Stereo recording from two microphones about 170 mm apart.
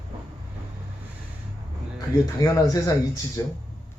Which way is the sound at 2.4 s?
20° left (ahead or behind).